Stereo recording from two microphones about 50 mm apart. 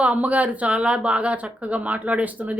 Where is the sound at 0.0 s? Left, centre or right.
Right.